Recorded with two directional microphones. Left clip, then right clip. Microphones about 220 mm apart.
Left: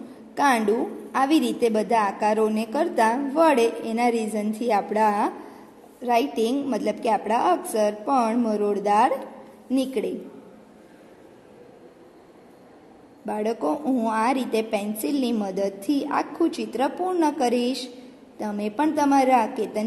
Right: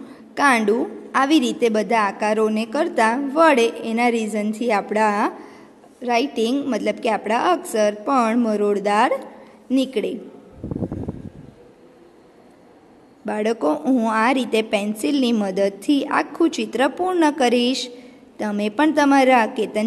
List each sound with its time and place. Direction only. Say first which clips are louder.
0.3 s a woman's voice: right 4 dB; 15° right (ahead or behind)
13.2 s a woman's voice: right 5 dB; 20° right (ahead or behind)